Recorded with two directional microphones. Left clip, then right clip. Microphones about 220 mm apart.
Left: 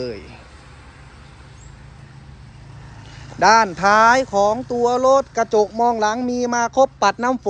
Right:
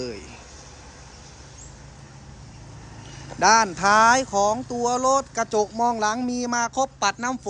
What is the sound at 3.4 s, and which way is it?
Speech, 10° right (ahead or behind).